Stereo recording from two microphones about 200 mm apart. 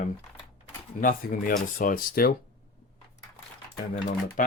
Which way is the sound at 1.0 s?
45° left (ahead or behind).